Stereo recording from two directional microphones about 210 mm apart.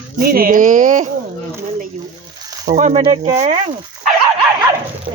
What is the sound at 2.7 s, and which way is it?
Speech, 35° right (ahead or behind).